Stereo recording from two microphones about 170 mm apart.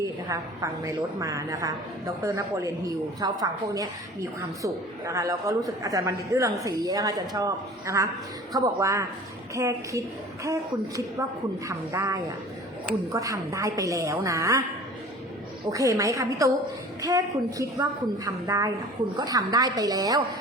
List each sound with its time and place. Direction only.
0.0 s a woman's voice: 20° right (ahead or behind)
15.7 s a woman's voice: 20° right (ahead or behind)